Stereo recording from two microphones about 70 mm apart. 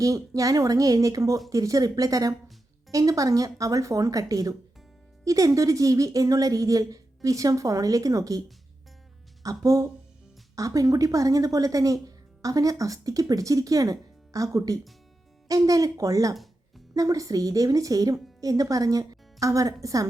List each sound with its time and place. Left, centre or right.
0.0 s a woman's voice: right
16.3 s music: centre
16.9 s a woman's voice: right